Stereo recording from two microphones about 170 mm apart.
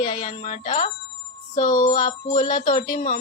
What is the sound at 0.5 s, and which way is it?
Speech, 50° left (ahead or behind).